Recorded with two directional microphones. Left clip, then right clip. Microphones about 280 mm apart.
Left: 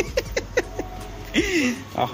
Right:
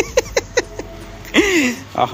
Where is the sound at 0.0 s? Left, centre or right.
Centre.